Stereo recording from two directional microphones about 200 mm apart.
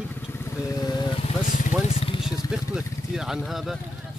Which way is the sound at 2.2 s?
5° right (ahead or behind).